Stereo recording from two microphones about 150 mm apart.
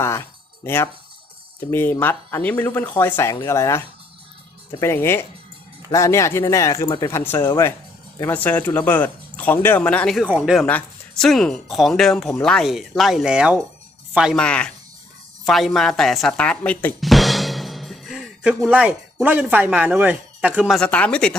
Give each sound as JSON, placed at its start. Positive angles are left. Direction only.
{"t": 0.0, "sound": "a sound", "side_deg": 15}
{"t": 1.7, "sound": "speech", "side_deg": 15}
{"t": 10.2, "sound": "speech", "side_deg": -5}
{"t": 14.3, "sound": "speech", "side_deg": 10}
{"t": 20.7, "sound": "speech", "side_deg": 10}